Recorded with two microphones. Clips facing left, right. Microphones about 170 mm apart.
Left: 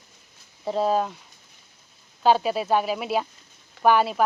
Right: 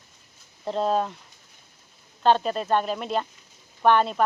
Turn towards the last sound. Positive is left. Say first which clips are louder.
# left 1 dB
turn(degrees=5)  # may be behind; listen again after turning